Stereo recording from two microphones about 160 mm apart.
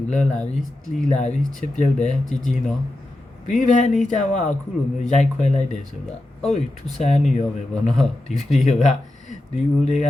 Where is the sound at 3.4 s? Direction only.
50° left (ahead or behind).